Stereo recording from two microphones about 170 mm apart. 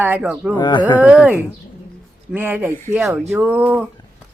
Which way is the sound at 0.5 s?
25° left (ahead or behind).